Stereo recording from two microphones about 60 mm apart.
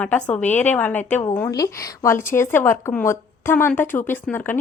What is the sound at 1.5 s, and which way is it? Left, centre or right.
Speech, left.